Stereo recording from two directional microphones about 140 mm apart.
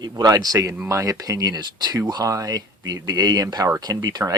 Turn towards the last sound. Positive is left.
turn(degrees=-25)  # may be behind; listen again after turning